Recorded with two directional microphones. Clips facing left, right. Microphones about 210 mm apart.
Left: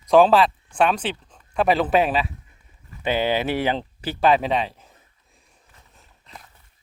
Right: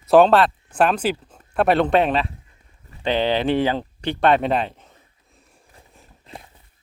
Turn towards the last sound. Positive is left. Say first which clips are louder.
# right 5 dB
turn(degrees=-30)  # may be behind; listen again after turning